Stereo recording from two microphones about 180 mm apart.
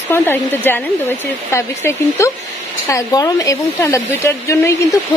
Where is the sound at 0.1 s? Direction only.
10° left (ahead or behind).